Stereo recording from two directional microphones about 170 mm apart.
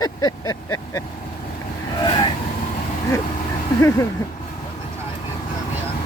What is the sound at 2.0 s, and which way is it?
Vehicle, 30° left (ahead or behind).